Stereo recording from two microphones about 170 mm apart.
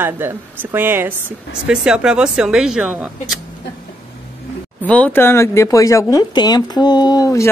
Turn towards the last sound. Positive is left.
turn(degrees=20)  # may be behind; listen again after turning